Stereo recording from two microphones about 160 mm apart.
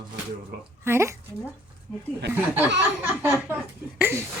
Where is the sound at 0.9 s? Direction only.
15° right (ahead or behind).